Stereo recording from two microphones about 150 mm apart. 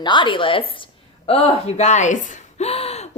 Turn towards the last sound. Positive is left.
turn(degrees=45)  # may be behind; listen again after turning